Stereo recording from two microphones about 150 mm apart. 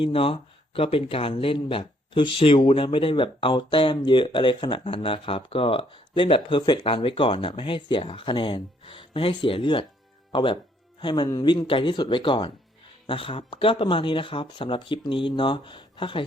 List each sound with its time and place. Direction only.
0.0 s speech: 35° left (ahead or behind)